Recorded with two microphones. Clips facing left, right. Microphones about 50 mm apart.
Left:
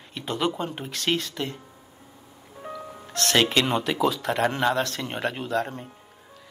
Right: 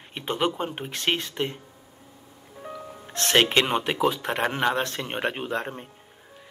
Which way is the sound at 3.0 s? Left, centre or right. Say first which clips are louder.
Right 1 dB; right.